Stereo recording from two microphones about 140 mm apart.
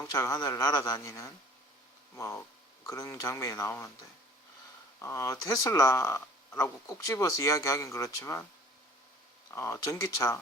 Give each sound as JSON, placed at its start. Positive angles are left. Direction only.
{"t": 0.0, "sound": "speech", "side_deg": 20}
{"t": 4.9, "sound": "speech", "side_deg": 20}
{"t": 9.5, "sound": "speech", "side_deg": 15}